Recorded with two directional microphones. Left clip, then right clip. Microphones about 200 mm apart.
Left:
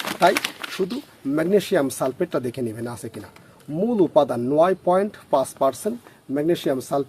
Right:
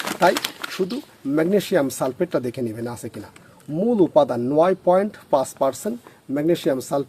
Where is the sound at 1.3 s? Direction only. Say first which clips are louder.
Even; 20° right (ahead or behind).